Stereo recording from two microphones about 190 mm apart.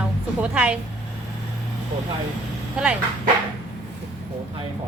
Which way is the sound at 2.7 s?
10° right (ahead or behind).